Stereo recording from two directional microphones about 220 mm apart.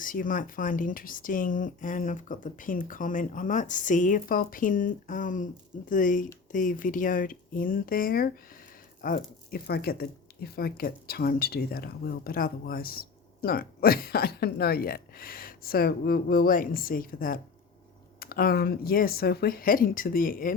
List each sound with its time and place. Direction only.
0.0 s speech: 40° left (ahead or behind)